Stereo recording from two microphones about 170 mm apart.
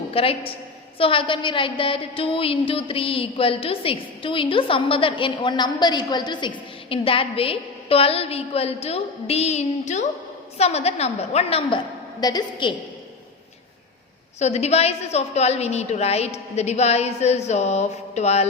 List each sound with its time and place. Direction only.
0.1 s a woman's voice: 35° left (ahead or behind)
12.2 s a woman's voice: 25° left (ahead or behind)
14.3 s a woman's voice: 40° left (ahead or behind)